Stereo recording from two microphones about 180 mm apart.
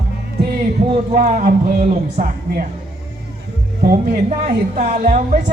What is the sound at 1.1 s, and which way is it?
A woman's voice, 45° right (ahead or behind).